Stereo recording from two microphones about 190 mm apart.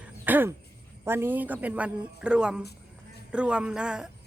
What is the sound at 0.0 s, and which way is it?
Throat clearing, 10° right (ahead or behind).